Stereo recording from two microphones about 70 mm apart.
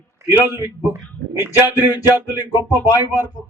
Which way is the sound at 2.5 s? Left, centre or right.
Left.